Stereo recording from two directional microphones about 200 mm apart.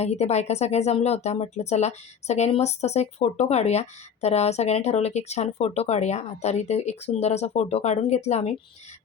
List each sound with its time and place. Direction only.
0.0 s speech: 35° left (ahead or behind)